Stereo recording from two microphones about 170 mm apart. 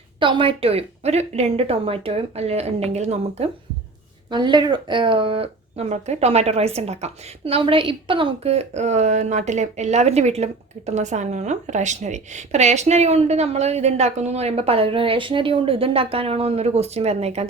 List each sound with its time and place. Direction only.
0.2 s speech: 30° right (ahead or behind)
4.3 s speech: 25° right (ahead or behind)